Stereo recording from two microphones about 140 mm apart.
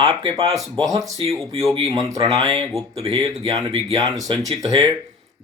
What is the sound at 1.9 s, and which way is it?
Speech, 25° right (ahead or behind).